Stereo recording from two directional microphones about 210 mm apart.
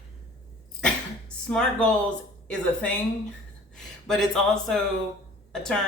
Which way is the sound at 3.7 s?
Centre (ahead or behind).